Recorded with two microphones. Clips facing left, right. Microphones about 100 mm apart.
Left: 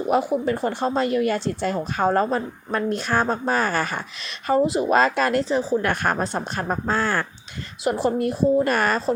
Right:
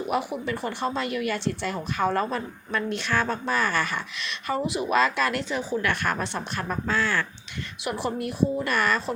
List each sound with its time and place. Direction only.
0.1 s speech: 40° left (ahead or behind)